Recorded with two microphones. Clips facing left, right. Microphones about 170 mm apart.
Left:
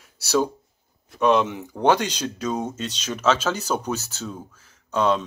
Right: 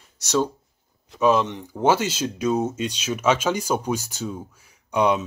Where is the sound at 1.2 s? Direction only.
Centre (ahead or behind).